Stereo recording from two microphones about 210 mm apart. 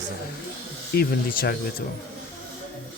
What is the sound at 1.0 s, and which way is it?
Speech, 45° left (ahead or behind).